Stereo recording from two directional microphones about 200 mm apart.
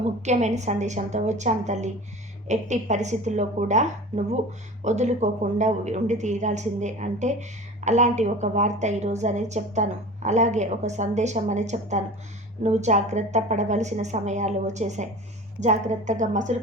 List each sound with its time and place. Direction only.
0.0 s a woman's voice: 35° right (ahead or behind)